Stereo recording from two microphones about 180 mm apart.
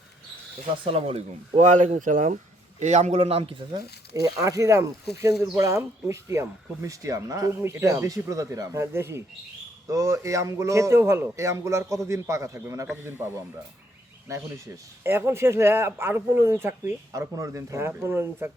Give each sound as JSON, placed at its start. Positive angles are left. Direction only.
{"t": 0.9, "sound": "speech", "side_deg": -35}